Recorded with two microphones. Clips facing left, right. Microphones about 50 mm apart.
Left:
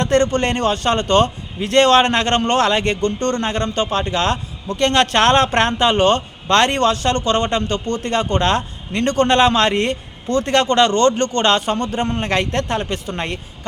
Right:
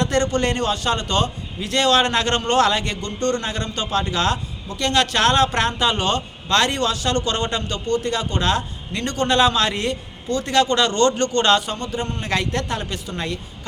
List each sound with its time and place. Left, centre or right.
0.0 s speech: left
4.7 s speech: left
11.8 s a man's voice: left
12.3 s speech: left